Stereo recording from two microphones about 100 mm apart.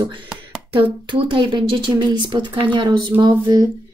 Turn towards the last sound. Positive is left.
turn(degrees=-45)  # may be behind; listen again after turning